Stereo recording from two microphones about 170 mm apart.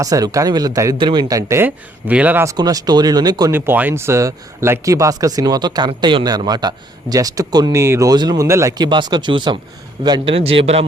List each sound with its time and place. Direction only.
0.0 s a man's voice: 20° right (ahead or behind)
3.5 s a man's voice: 10° right (ahead or behind); by 10.8 s 35° right (ahead or behind)